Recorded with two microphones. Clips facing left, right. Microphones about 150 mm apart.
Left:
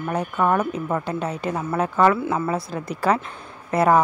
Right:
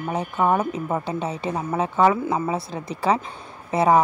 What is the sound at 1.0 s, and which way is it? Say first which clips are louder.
Speech: left 1 dB; centre (ahead or behind).